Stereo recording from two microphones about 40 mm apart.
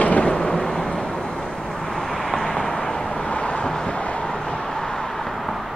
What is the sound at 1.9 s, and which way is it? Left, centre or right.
Vehicle, centre.